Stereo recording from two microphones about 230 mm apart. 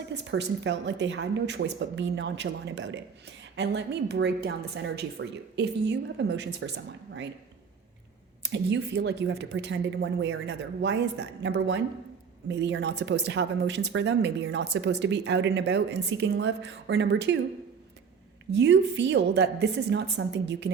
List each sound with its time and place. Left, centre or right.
0.1 s speech: right
8.4 s speech: right
18.5 s speech: right